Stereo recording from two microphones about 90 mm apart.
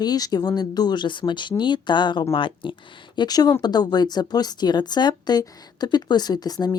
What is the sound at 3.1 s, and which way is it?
Speech, 50° left (ahead or behind).